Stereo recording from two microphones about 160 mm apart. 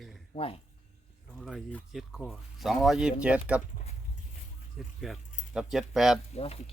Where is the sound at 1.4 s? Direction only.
5° left (ahead or behind).